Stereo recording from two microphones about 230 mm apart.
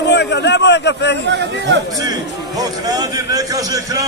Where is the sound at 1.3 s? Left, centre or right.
Right.